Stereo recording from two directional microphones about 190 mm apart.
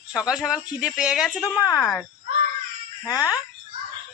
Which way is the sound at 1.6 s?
15° left (ahead or behind).